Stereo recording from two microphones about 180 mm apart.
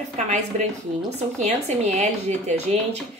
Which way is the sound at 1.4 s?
40° right (ahead or behind).